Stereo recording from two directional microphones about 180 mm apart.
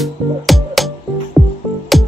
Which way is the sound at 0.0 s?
Centre (ahead or behind).